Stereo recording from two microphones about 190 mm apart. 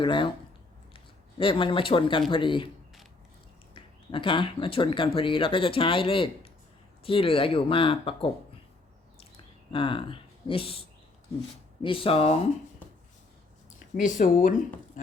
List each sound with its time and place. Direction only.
0.0 s speech: 25° left (ahead or behind)
3.8 s speech: 25° left (ahead or behind)
9.7 s speech: 25° left (ahead or behind)
13.7 s speech: 40° left (ahead or behind)